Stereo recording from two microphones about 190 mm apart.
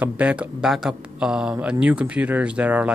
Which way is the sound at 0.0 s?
5° right (ahead or behind).